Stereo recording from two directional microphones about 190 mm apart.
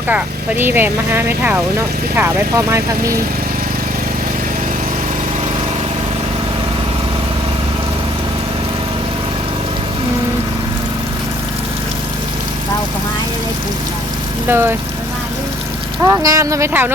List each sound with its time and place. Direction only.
0.1 s speech: 10° right (ahead or behind)
14.4 s speech: 10° right (ahead or behind)
16.0 s speech: 15° right (ahead or behind)